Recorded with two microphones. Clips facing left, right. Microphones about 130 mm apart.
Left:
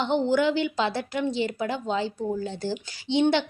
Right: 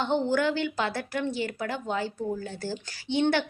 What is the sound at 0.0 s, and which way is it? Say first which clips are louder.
A woman's voice: left 3 dB; 15° left (ahead or behind).